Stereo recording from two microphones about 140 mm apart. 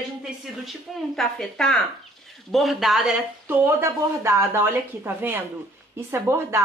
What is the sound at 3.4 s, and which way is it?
Speech, 15° right (ahead or behind).